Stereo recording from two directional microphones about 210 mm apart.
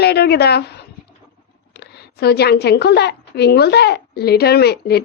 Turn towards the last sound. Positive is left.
turn(degrees=50)  # may be behind; listen again after turning